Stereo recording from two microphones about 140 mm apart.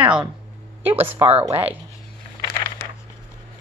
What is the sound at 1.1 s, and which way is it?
Speech, 45° right (ahead or behind).